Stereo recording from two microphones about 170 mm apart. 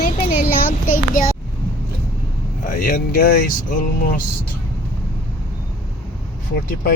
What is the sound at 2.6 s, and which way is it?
Speech, 60° left (ahead or behind).